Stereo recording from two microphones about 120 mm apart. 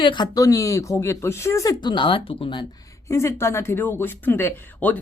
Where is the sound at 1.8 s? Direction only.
40° left (ahead or behind).